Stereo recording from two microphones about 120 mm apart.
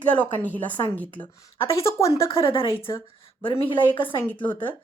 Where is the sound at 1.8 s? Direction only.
25° left (ahead or behind).